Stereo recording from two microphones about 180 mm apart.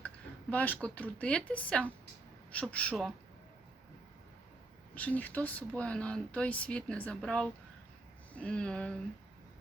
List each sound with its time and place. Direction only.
0.5 s speech: 10° left (ahead or behind)
4.9 s speech: 10° left (ahead or behind)